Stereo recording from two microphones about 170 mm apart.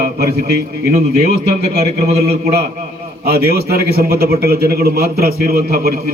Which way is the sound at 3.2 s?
65° right (ahead or behind).